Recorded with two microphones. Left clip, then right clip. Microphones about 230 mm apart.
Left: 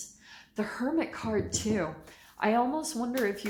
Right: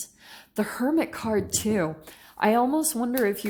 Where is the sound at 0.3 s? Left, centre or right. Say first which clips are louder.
Right 5 dB; right.